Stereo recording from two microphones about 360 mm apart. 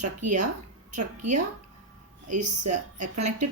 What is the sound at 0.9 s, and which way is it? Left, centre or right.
Speech, right.